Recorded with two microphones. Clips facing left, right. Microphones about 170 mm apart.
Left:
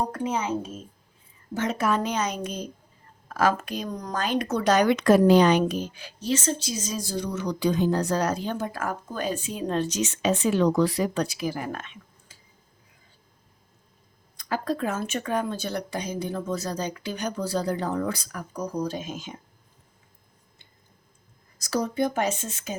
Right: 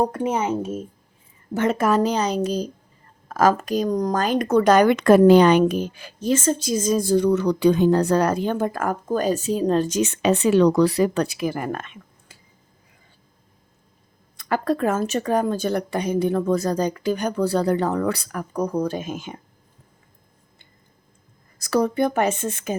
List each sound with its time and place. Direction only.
0.2 s a woman's voice: 55° right (ahead or behind)
14.3 s a woman's voice: 60° right (ahead or behind)
21.6 s a woman's voice: 60° right (ahead or behind)